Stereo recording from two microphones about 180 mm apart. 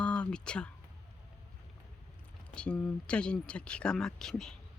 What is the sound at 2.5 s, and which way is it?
Speech, 5° left (ahead or behind).